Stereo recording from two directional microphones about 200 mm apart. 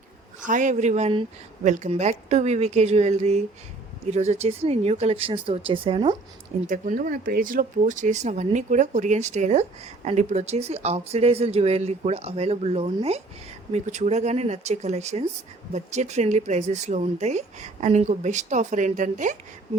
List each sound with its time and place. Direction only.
0.4 s speech: 40° right (ahead or behind)
6.7 s speech: 40° right (ahead or behind)